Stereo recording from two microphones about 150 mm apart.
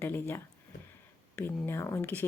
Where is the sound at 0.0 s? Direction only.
15° left (ahead or behind).